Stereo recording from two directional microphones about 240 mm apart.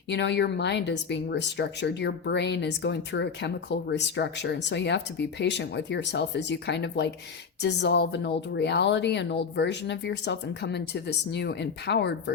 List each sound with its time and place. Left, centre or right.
0.1 s speech: left